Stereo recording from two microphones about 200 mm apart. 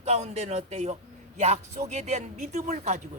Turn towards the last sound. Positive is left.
turn(degrees=-35)  # may be behind; listen again after turning